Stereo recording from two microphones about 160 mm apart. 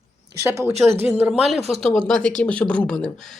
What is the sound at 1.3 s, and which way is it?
Speech, centre (ahead or behind).